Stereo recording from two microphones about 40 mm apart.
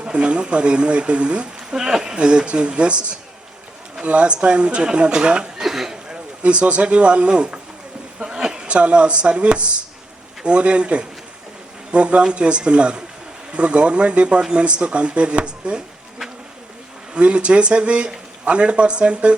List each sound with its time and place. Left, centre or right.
0.0 s speech: right
4.0 s speech: right
5.6 s a sound: centre
6.4 s speech: right
8.4 s a sound: centre
8.6 s speech: right
17.2 s speech: right